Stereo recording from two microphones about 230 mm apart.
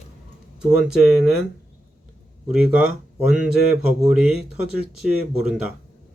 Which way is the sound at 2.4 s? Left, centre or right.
Centre.